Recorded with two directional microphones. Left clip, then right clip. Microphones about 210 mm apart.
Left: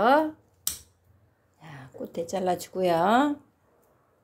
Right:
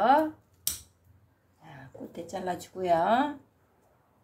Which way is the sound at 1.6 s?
40° left (ahead or behind).